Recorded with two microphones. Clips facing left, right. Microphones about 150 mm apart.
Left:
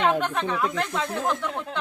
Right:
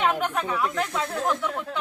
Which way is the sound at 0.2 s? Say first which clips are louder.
Left 1 dB; 10° right (ahead or behind).